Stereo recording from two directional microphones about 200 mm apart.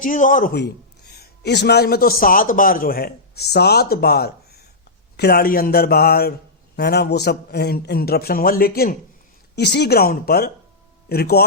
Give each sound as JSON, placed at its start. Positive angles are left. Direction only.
{"t": 0.0, "sound": "a man's voice", "side_deg": 40}